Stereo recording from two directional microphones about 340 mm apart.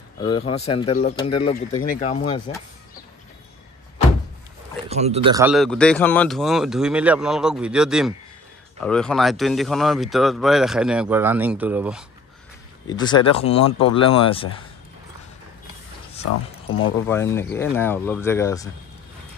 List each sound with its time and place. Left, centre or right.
0.2 s speech: centre
4.8 s speech: centre
12.8 s speech: centre
16.6 s speech: left
17.1 s speech: centre